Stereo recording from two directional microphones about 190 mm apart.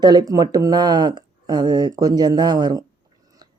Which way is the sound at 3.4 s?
20° right (ahead or behind).